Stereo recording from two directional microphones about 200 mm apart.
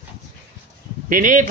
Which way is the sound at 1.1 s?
45° right (ahead or behind).